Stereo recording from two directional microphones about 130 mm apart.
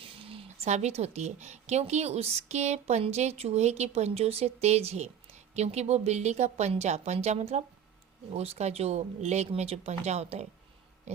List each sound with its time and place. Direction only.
0.0 s speech: 45° right (ahead or behind)